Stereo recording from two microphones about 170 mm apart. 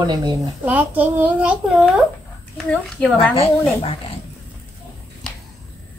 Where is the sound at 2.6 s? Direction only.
5° left (ahead or behind).